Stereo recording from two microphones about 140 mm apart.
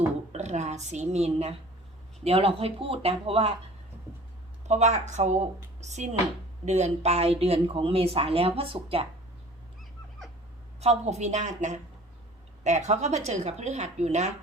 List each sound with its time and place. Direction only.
0.3 s a woman's voice: 55° right (ahead or behind)
4.7 s speech: 55° right (ahead or behind)
10.8 s speech: 50° right (ahead or behind)